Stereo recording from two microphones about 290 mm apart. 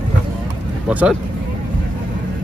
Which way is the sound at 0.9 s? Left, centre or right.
Centre.